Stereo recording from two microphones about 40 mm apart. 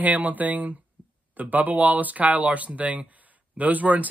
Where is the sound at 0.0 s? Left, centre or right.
Right.